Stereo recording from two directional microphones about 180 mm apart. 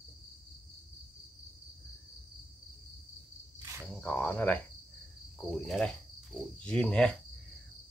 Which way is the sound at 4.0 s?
5° left (ahead or behind).